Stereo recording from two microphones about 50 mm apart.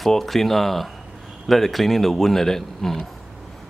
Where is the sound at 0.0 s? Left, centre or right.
Centre.